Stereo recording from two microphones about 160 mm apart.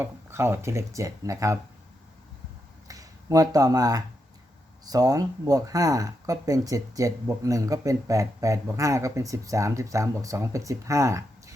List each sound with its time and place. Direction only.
0.0 s speech: 15° right (ahead or behind)
2.8 s speech: 20° right (ahead or behind)